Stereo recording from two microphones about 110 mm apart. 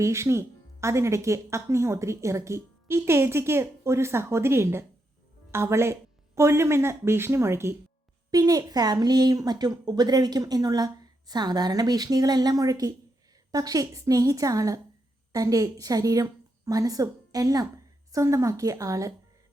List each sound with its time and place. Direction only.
0.0 s speech: 25° right (ahead or behind)